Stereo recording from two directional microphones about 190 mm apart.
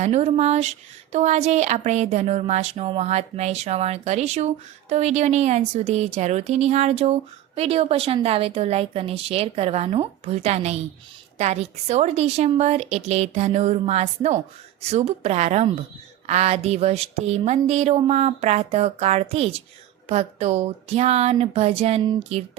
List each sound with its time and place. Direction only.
0.0 s a woman's voice: 35° right (ahead or behind)